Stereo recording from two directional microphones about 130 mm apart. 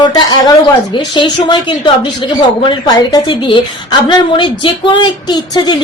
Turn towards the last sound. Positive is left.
turn(degrees=35)  # may be behind; listen again after turning